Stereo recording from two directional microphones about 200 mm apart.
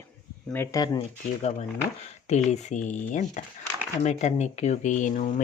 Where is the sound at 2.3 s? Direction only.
35° left (ahead or behind).